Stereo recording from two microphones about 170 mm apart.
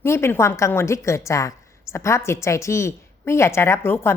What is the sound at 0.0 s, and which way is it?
A woman's voice, 15° left (ahead or behind).